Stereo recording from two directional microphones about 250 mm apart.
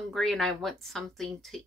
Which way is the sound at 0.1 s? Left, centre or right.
Centre.